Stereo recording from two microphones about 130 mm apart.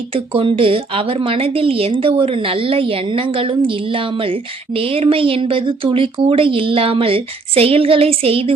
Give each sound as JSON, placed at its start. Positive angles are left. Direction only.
{"t": 0.1, "sound": "a woman's voice", "side_deg": -45}